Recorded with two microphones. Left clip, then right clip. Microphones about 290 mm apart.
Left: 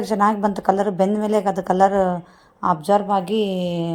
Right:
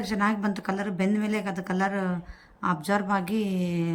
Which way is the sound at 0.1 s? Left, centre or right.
Centre.